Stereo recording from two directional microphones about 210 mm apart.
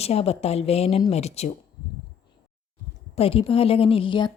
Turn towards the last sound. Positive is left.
turn(degrees=25)  # may be behind; listen again after turning